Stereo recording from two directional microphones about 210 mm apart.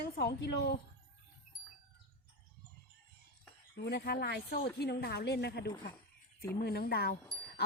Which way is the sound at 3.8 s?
50° left (ahead or behind).